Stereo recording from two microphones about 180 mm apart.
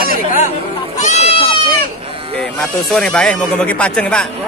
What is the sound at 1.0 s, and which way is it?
Goat, 40° left (ahead or behind).